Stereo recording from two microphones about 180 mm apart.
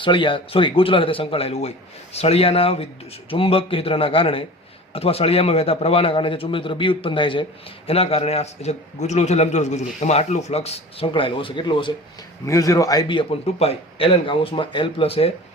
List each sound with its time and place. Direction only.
0.0 s a man's voice: 25° left (ahead or behind)